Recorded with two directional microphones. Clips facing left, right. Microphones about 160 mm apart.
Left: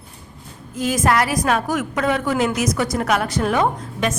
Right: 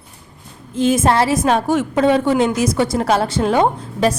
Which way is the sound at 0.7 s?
25° right (ahead or behind).